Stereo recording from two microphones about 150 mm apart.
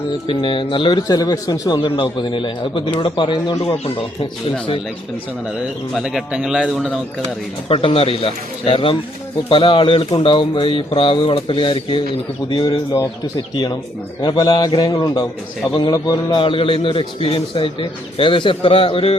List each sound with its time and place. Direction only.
0.3 s a man's voice: 35° left (ahead or behind)
6.0 s speech: 5° right (ahead or behind)
7.7 s a man's voice: 40° left (ahead or behind)
14.2 s a man's voice: 30° left (ahead or behind)